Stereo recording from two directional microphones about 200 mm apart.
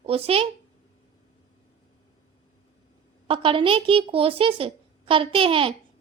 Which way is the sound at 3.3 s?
25° right (ahead or behind).